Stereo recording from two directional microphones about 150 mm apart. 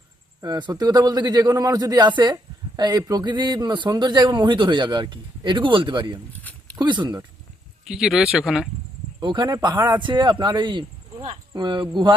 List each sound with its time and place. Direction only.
0.4 s speech: 25° right (ahead or behind)
7.9 s speech: 5° right (ahead or behind)
9.2 s speech: 30° right (ahead or behind)